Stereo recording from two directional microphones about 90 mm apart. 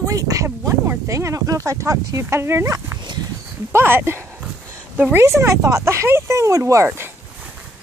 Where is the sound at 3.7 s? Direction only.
25° right (ahead or behind).